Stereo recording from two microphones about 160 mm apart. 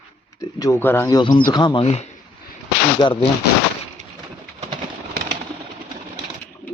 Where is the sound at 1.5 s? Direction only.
30° left (ahead or behind).